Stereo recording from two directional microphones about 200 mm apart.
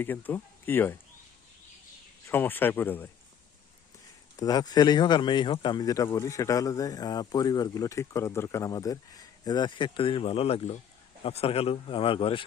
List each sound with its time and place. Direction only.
0.0 s speech: 10° left (ahead or behind)
2.2 s speech: 10° left (ahead or behind)
4.4 s speech: 20° left (ahead or behind)